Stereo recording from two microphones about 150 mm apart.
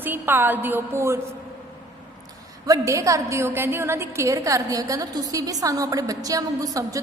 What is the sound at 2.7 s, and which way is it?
A woman's voice, 20° right (ahead or behind).